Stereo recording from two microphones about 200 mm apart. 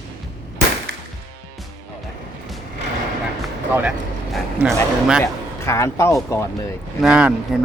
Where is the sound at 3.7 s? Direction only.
5° right (ahead or behind).